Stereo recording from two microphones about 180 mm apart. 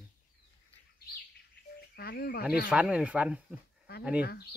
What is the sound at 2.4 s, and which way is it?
Speech, 5° right (ahead or behind).